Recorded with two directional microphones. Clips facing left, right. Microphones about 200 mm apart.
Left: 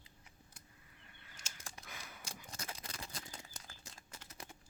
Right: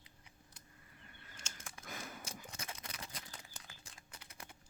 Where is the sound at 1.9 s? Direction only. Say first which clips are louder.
Right 9 dB; 45° right (ahead or behind).